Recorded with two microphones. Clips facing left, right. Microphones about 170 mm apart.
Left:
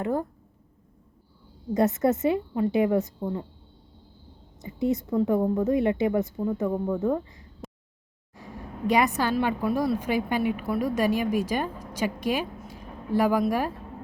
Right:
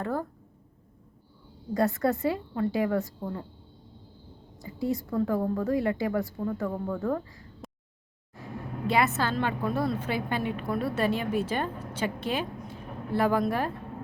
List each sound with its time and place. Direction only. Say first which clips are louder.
0.0 s a woman's voice: left 4 dB; 20° left (ahead or behind)
1.7 s a woman's voice: left 3 dB; 20° left (ahead or behind)
4.6 s a woman's voice: left 4 dB; 20° left (ahead or behind)
7.6 s a sound: left 4 dB; centre (ahead or behind)
8.9 s a woman's voice: left 3 dB; 15° left (ahead or behind)